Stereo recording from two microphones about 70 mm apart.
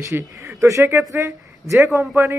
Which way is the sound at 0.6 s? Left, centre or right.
Right.